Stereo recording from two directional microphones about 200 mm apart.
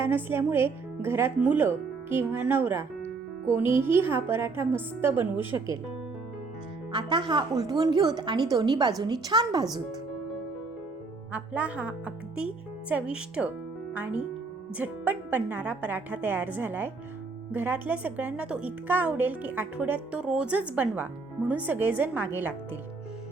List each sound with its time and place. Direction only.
0.0 s speech: 10° right (ahead or behind)
6.9 s a woman's voice: 25° right (ahead or behind)
11.3 s speech: 5° right (ahead or behind)